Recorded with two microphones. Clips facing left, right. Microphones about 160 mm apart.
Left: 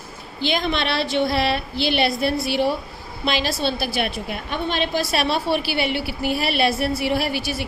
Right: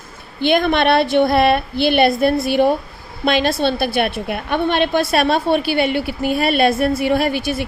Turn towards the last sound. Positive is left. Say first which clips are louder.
# right 5 dB
turn(degrees=-55)  # may be behind; listen again after turning